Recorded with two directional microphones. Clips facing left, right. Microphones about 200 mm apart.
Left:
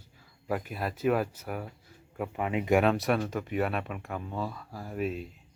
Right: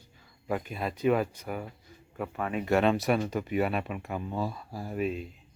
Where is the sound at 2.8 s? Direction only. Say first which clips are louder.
Right 1 dB; centre (ahead or behind).